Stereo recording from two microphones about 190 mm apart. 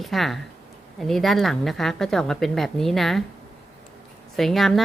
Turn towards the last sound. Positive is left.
turn(degrees=0)  # may be behind; listen again after turning